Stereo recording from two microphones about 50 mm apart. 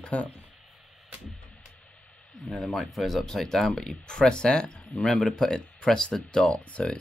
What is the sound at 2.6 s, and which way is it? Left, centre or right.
Speech, centre.